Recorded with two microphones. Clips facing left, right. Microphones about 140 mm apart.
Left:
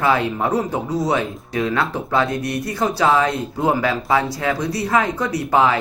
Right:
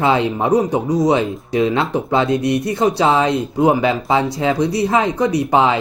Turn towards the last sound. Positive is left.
turn(degrees=-20)  # may be behind; listen again after turning